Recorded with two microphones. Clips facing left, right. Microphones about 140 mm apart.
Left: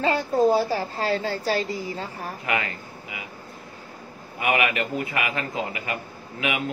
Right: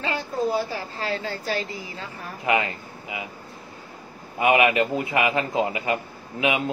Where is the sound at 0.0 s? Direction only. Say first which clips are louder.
Left 6 dB; 35° left (ahead or behind).